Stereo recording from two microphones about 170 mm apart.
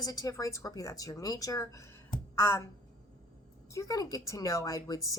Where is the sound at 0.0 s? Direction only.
20° left (ahead or behind).